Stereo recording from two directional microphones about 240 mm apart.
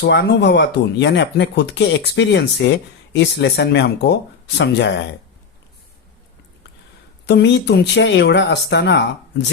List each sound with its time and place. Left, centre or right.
0.0 s speech: left
7.3 s speech: left